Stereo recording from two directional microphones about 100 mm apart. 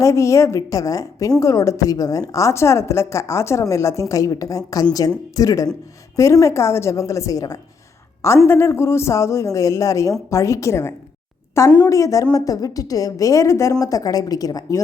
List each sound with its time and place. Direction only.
0.0 s a woman's voice: 30° left (ahead or behind)
8.4 s a woman's voice: 25° left (ahead or behind); by 14.8 s 40° left (ahead or behind)